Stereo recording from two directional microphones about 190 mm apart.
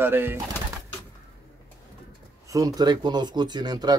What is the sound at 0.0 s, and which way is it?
Speech, 10° right (ahead or behind).